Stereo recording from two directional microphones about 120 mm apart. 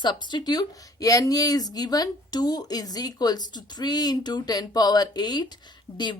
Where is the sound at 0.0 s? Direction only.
40° left (ahead or behind).